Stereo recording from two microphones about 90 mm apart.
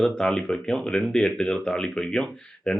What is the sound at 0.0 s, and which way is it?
Speech, 5° left (ahead or behind).